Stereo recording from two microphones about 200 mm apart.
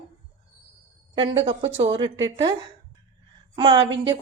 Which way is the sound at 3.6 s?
25° right (ahead or behind).